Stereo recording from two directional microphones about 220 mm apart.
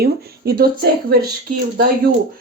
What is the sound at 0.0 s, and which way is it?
Speech, 45° right (ahead or behind).